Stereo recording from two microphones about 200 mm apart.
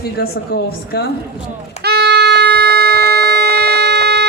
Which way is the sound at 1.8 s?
55° right (ahead or behind).